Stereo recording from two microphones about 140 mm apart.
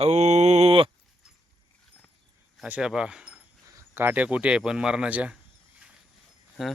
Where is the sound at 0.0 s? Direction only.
50° right (ahead or behind).